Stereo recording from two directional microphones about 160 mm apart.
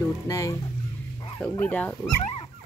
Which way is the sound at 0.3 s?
20° left (ahead or behind).